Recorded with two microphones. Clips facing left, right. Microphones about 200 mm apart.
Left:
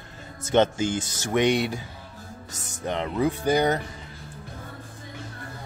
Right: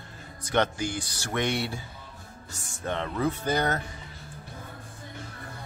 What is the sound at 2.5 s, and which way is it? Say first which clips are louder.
Speech: left 3 dB; 40° left (ahead or behind).